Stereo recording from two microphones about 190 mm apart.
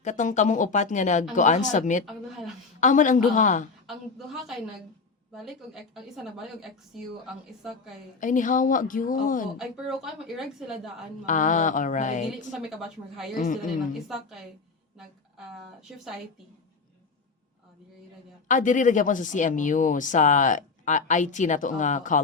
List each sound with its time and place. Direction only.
0.0 s speech: 40° left (ahead or behind)
3.8 s a woman's voice: centre (ahead or behind)
8.2 s speech: 45° left (ahead or behind)
9.6 s a woman's voice: 5° right (ahead or behind)
11.3 s speech: 40° left (ahead or behind)
12.5 s a woman's voice: centre (ahead or behind)
13.3 s speech: 45° left (ahead or behind)
14.1 s a woman's voice: centre (ahead or behind)
18.4 s speech: 40° left (ahead or behind)